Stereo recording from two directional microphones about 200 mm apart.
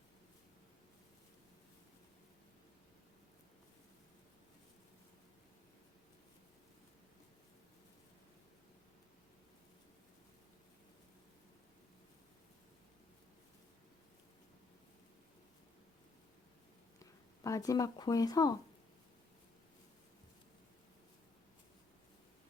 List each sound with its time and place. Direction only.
17.0 s speech: 15° left (ahead or behind)